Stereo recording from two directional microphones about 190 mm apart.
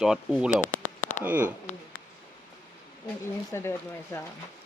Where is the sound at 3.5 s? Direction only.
15° left (ahead or behind).